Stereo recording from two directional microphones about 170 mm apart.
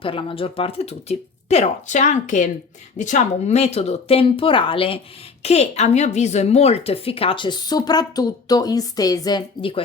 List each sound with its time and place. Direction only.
0.0 s a woman's voice: 30° left (ahead or behind)